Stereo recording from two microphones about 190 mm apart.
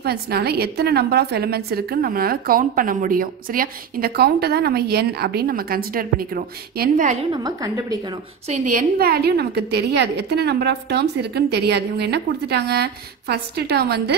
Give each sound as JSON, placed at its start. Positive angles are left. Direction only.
{"t": 0.0, "sound": "a woman's voice", "side_deg": -55}
{"t": 7.3, "sound": "a woman's voice", "side_deg": -20}
{"t": 8.5, "sound": "a woman's voice", "side_deg": -40}